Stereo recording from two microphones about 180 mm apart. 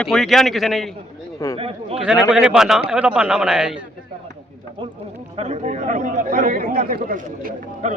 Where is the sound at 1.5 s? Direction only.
30° right (ahead or behind).